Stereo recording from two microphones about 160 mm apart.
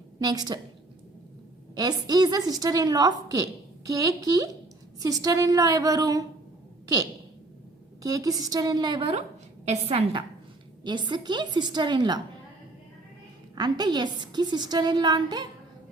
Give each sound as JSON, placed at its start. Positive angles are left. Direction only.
{"t": 0.2, "sound": "a woman's voice", "side_deg": -25}
{"t": 1.7, "sound": "a woman's voice", "side_deg": -25}
{"t": 13.6, "sound": "a woman's voice", "side_deg": -25}